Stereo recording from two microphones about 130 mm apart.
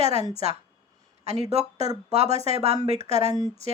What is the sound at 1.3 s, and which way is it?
Speech, 55° right (ahead or behind).